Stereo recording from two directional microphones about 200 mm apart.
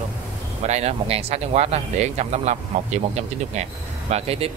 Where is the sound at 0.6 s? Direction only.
30° right (ahead or behind).